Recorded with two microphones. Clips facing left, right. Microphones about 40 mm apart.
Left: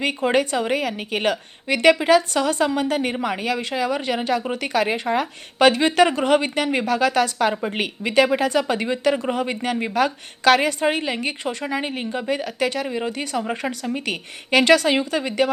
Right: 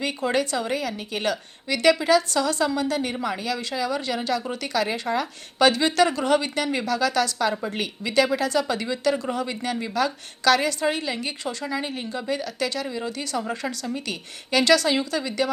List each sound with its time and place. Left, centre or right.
0.3 s a woman's voice: left